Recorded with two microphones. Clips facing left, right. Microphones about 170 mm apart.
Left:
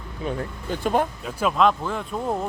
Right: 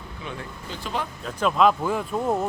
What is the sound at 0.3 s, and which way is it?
Speech, 45° left (ahead or behind).